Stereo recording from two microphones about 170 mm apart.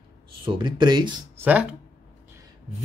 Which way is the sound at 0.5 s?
30° right (ahead or behind).